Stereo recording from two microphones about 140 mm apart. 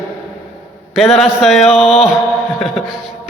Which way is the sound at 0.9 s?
Centre (ahead or behind).